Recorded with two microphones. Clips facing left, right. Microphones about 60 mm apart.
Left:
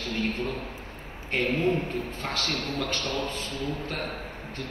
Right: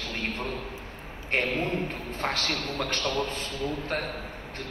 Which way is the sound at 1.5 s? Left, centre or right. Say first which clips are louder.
Left 3 dB; right.